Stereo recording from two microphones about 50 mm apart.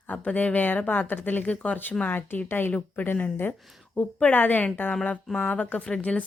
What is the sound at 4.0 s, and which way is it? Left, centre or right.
Speech, left.